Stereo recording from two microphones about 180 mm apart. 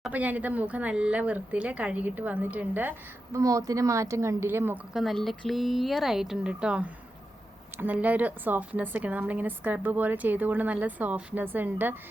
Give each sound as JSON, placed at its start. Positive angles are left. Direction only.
{"t": 0.0, "sound": "a woman's voice", "side_deg": -10}
{"t": 4.9, "sound": "a woman's voice", "side_deg": 0}